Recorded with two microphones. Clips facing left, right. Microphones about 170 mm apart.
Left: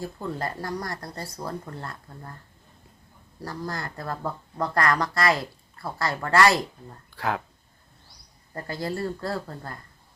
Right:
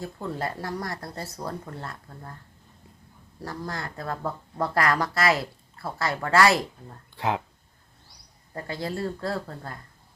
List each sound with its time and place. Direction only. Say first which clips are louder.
0.0 s speech: even; centre (ahead or behind)
3.4 s speech: left 1 dB; centre (ahead or behind)
7.2 s speech: right 1 dB; 20° right (ahead or behind)
8.5 s speech: left 1 dB; centre (ahead or behind)